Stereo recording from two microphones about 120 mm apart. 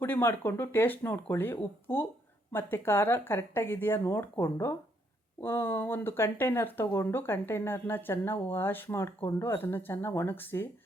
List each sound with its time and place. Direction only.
0.0 s speech: 20° left (ahead or behind)